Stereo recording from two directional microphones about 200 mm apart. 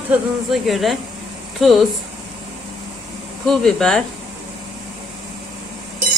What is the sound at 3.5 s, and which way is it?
Speech, centre (ahead or behind).